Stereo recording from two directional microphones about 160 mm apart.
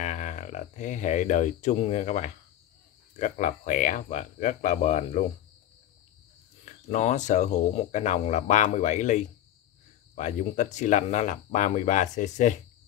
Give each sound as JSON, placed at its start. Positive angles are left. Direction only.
{"t": 0.0, "sound": "speech", "side_deg": 50}
{"t": 6.6, "sound": "speech", "side_deg": 45}